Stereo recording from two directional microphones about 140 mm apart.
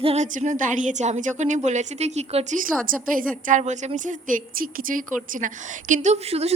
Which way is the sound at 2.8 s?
75° right (ahead or behind).